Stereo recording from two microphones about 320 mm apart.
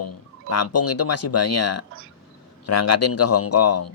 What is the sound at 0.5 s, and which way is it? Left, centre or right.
Speech, left.